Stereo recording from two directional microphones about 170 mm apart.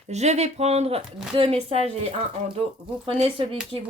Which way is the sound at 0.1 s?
40° right (ahead or behind).